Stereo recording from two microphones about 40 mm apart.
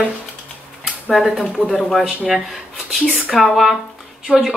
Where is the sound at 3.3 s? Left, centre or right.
Centre.